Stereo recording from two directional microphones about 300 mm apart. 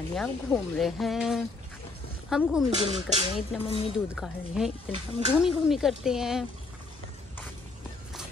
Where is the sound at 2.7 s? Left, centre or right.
Centre.